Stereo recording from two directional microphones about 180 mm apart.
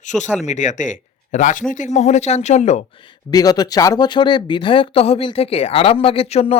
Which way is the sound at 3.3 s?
20° left (ahead or behind).